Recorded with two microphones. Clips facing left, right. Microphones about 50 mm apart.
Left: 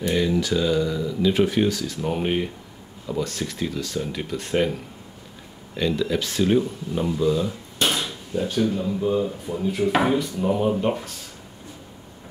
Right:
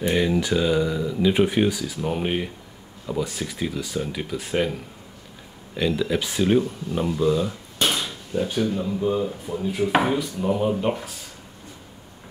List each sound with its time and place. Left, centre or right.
0.0 s speech: centre